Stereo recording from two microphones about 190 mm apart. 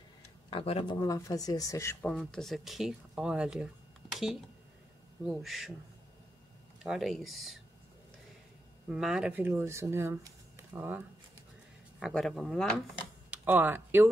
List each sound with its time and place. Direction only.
0.5 s speech: 30° left (ahead or behind); by 5.7 s centre (ahead or behind)
6.8 s speech: centre (ahead or behind)
8.8 s speech: 5° right (ahead or behind)
12.0 s speech: centre (ahead or behind)
13.3 s speech: 10° right (ahead or behind)